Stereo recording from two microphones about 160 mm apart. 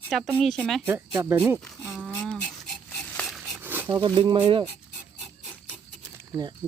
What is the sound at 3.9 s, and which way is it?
Speech, 30° right (ahead or behind).